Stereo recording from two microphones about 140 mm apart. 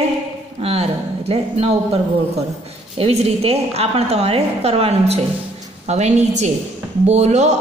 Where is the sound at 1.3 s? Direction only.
45° right (ahead or behind).